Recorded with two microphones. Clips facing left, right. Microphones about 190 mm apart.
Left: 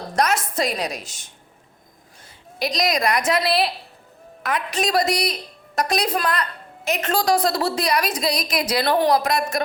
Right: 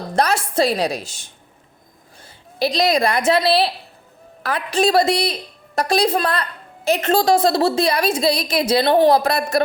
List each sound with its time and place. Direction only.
0.2 s a woman's voice: 30° right (ahead or behind)